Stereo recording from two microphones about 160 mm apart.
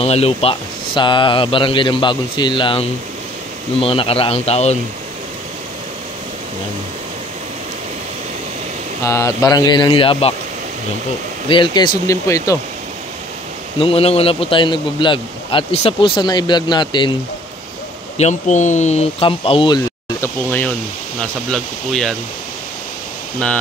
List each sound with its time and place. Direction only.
0.0 s speech: 40° left (ahead or behind)
9.0 s speech: 15° left (ahead or behind); by 10.3 s 35° left (ahead or behind)
11.4 s speech: 30° left (ahead or behind)
12.3 s speech: 20° left (ahead or behind)
13.7 s speech: 35° left (ahead or behind)
18.1 s speech: 45° left (ahead or behind)
20.2 s speech: 10° left (ahead or behind)